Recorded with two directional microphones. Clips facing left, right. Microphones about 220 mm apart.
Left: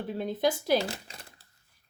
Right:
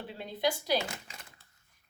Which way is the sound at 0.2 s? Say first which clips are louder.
Left 4 dB; 50° left (ahead or behind).